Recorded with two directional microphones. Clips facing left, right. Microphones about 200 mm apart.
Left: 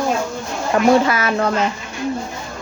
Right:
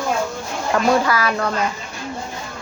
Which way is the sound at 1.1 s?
25° left (ahead or behind).